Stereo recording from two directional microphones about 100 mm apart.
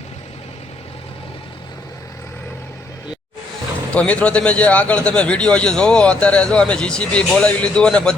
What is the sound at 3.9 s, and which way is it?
A man's voice, 15° left (ahead or behind).